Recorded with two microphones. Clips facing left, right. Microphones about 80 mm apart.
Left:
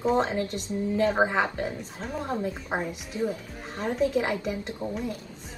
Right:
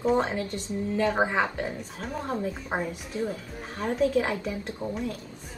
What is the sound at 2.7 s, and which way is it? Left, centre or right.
Speech, centre.